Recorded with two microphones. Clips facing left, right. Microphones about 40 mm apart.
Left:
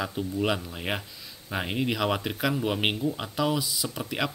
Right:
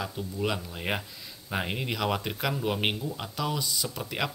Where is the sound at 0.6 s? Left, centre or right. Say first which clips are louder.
Even; centre.